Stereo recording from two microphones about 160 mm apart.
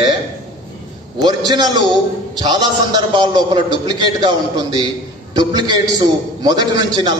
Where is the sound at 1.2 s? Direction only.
25° right (ahead or behind).